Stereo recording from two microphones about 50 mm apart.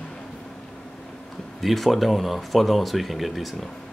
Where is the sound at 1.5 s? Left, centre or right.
Centre.